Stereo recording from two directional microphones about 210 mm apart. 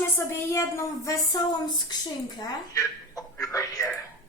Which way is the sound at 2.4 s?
15° left (ahead or behind).